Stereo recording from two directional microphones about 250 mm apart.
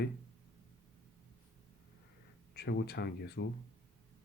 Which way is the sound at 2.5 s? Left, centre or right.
Left.